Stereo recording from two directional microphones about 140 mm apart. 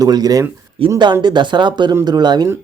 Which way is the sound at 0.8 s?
40° right (ahead or behind).